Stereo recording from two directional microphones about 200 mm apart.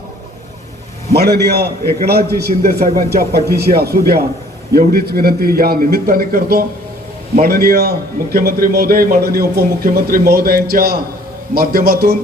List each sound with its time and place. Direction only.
1.1 s a man's voice: 55° right (ahead or behind)